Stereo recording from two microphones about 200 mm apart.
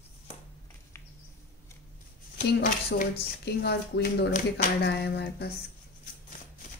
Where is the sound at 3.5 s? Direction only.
55° left (ahead or behind).